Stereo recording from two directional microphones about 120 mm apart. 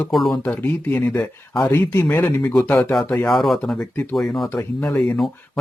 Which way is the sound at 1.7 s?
20° left (ahead or behind).